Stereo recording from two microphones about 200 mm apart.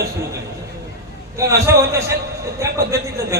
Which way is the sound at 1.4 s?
15° right (ahead or behind).